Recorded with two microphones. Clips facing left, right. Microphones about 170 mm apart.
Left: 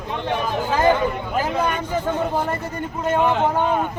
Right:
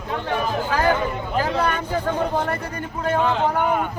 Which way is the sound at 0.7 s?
20° left (ahead or behind).